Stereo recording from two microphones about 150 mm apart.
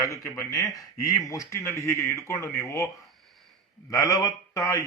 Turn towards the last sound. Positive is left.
turn(degrees=20)  # may be behind; listen again after turning